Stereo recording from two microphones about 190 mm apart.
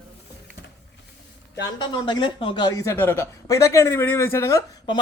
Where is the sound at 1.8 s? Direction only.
25° left (ahead or behind).